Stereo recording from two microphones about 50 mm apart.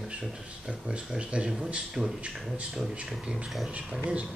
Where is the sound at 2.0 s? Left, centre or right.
Centre.